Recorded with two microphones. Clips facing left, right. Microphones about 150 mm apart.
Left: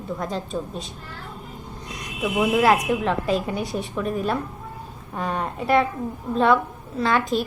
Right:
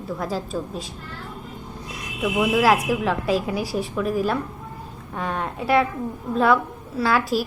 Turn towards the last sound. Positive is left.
turn(degrees=-5)  # may be behind; listen again after turning